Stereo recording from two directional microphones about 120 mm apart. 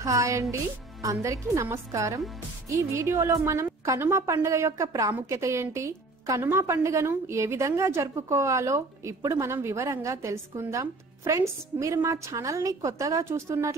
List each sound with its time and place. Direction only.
0.0 s a woman's voice: 25° right (ahead or behind)